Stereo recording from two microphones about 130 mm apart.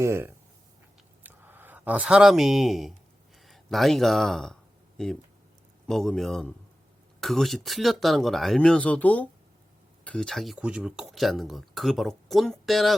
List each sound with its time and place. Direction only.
0.0 s speech: 20° right (ahead or behind); by 13.0 s centre (ahead or behind)